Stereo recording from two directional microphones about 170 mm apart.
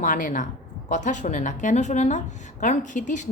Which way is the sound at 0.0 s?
50° left (ahead or behind).